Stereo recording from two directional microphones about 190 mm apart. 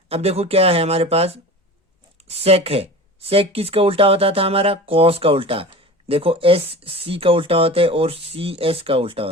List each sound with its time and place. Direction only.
0.1 s speech: 35° right (ahead or behind)
2.4 s speech: 30° right (ahead or behind)